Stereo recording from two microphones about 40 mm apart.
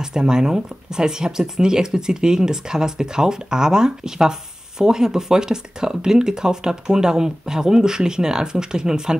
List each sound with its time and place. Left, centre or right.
0.0 s speech: centre